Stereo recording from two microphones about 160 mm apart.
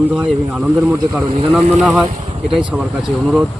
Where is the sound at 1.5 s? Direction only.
Centre (ahead or behind).